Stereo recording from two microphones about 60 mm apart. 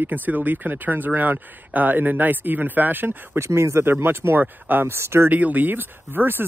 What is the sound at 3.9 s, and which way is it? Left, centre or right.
Speech, right.